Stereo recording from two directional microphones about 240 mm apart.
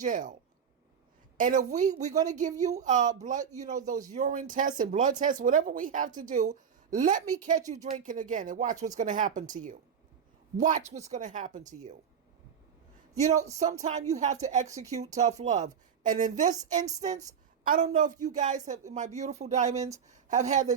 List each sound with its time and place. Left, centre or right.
0.0 s speech: right
1.4 s speech: right
10.6 s speech: right
14.1 s speech: right